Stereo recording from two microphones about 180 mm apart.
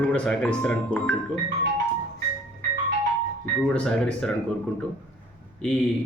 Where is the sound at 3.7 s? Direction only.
5° left (ahead or behind).